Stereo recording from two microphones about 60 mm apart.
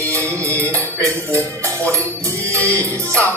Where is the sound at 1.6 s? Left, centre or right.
Right.